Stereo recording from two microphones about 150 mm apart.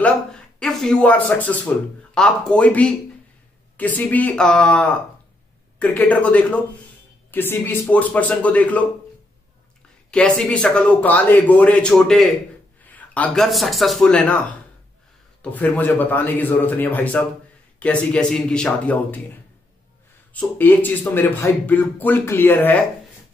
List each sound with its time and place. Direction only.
0.0 s a man's voice: 5° left (ahead or behind)
10.1 s a man's voice: 5° left (ahead or behind)
20.3 s speech: 10° left (ahead or behind)